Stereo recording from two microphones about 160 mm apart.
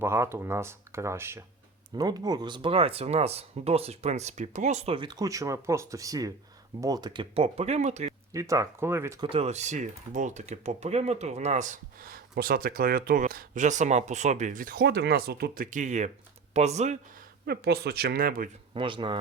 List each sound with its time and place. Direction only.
0.0 s speech: 15° right (ahead or behind); by 8.1 s 45° right (ahead or behind)
8.3 s speech: 20° right (ahead or behind)
9.2 s speech: 35° right (ahead or behind)
12.3 s speech: 65° right (ahead or behind); by 17.0 s 45° right (ahead or behind)
17.4 s speech: 75° right (ahead or behind)
18.7 s speech: 30° right (ahead or behind)